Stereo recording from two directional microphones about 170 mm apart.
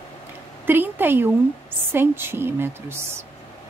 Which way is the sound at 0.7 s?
10° right (ahead or behind).